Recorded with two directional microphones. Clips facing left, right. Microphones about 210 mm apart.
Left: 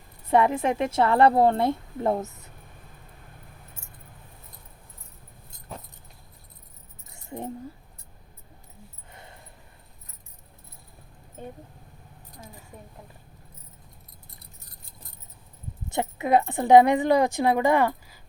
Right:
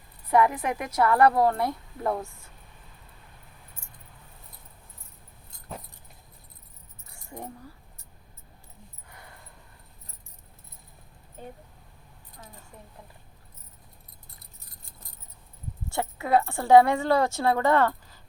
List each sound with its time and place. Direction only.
0.3 s a woman's voice: 25° left (ahead or behind)
7.1 s keys jangling: 20° left (ahead or behind)
9.0 s a sound: 25° left (ahead or behind)
15.9 s a woman's voice: 20° left (ahead or behind)